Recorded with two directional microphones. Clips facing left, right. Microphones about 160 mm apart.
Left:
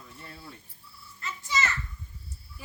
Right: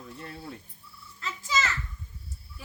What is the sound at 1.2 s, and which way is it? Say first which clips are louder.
Children playing: right 2 dB; 90° right.